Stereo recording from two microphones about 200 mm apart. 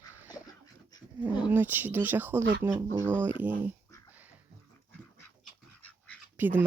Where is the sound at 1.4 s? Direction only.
10° right (ahead or behind).